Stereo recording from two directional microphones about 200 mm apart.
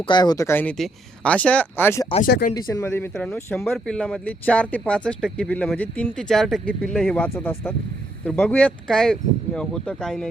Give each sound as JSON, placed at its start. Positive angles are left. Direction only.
{"t": 0.0, "sound": "speech", "side_deg": 20}
{"t": 2.2, "sound": "speech", "side_deg": 50}
{"t": 2.6, "sound": "speech", "side_deg": 15}